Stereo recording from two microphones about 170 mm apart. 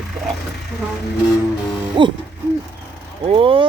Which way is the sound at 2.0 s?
30° right (ahead or behind).